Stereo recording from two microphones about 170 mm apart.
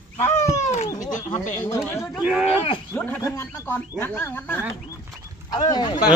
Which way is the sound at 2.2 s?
5° right (ahead or behind).